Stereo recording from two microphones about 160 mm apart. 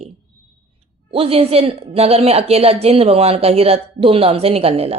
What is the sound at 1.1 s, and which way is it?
A woman's voice, 35° right (ahead or behind).